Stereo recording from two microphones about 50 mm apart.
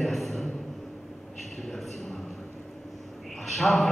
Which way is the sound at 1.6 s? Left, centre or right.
Centre.